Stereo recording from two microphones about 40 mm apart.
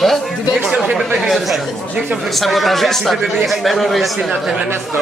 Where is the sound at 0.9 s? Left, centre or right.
Centre.